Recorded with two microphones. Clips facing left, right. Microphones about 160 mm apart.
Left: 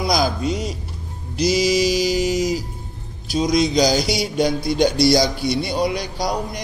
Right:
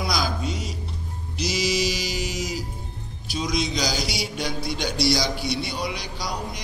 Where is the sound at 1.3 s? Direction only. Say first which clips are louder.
Left 8 dB; 45° left (ahead or behind).